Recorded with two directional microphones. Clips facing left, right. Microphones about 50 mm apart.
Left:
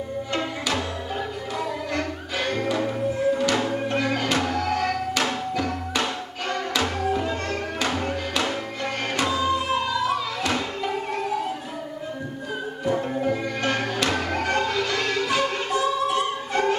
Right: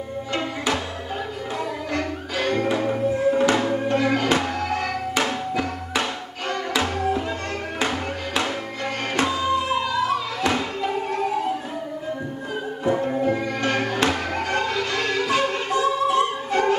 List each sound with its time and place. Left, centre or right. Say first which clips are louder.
1.9 s music: right 1 dB; centre
7.9 s music: left 1 dB; centre
9.2 s music: right 1 dB; centre
13.7 s music: right 2 dB; centre
15.7 s music: right 4 dB; right